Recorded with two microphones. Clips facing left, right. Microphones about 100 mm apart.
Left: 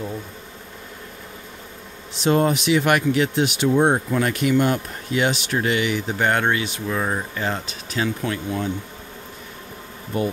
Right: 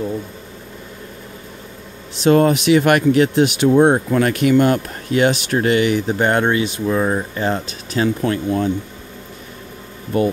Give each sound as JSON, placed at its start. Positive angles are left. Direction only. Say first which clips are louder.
{"t": 2.2, "sound": "speech", "louder": "right 6 dB", "side_deg": -75}
{"t": 6.1, "sound": "speech", "louder": "right 1 dB", "side_deg": -30}
{"t": 7.3, "sound": "speech", "louder": "right 5 dB", "side_deg": -35}
{"t": 10.1, "sound": "speech", "louder": "right 6 dB", "side_deg": -65}